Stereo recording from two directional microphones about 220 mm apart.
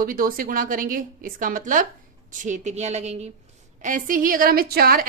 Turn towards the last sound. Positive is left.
turn(degrees=-45)  # may be behind; listen again after turning